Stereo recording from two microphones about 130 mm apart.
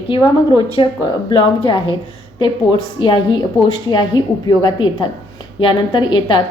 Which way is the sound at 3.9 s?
35° left (ahead or behind).